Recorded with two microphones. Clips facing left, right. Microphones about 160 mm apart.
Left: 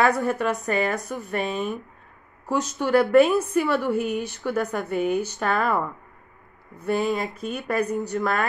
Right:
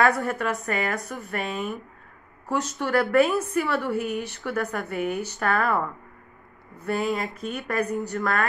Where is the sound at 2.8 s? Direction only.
20° left (ahead or behind).